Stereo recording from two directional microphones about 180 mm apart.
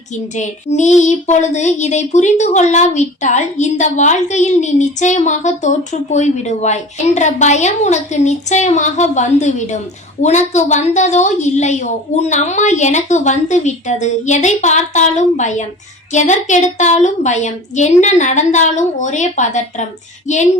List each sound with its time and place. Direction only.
0.1 s speech: 40° left (ahead or behind)